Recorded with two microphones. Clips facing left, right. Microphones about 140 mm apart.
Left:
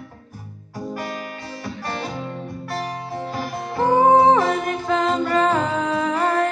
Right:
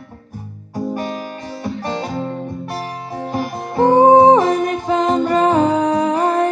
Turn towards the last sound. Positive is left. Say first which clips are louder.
# right 4 dB
turn(degrees=-20)  # may be behind; listen again after turning